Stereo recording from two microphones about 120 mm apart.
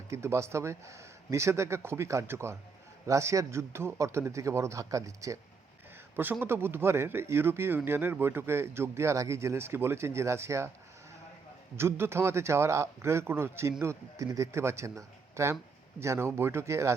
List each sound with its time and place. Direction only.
0.1 s speech: 25° right (ahead or behind)
6.4 s speech: 20° right (ahead or behind)
11.8 s speech: 20° right (ahead or behind)